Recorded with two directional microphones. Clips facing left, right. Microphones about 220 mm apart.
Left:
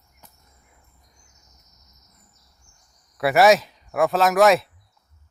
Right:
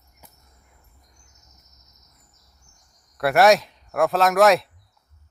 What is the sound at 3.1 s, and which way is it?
Speech, centre (ahead or behind).